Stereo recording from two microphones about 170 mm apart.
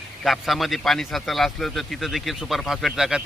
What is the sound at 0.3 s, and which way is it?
A man's voice, centre (ahead or behind).